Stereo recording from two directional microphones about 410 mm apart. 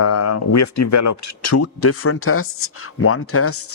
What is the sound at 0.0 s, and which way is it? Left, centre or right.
Speech, left.